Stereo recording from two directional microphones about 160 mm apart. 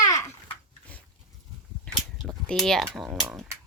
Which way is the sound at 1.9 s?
5° left (ahead or behind).